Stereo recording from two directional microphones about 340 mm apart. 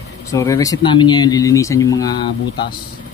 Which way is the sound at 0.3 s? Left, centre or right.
Centre.